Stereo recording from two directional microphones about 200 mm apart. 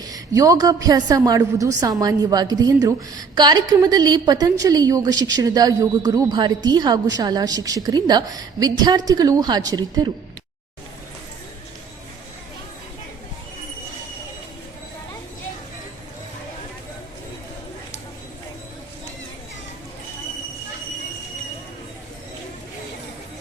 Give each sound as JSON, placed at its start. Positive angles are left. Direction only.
{"t": 0.0, "sound": "a woman's voice", "side_deg": -15}